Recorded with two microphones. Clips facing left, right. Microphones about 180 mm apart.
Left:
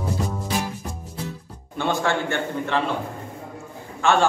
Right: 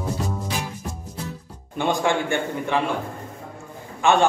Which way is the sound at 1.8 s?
15° right (ahead or behind).